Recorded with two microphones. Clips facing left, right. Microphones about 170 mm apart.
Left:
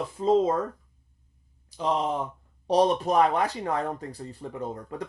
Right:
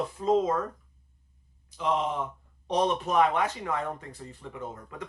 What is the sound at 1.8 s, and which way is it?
Speech, 35° left (ahead or behind).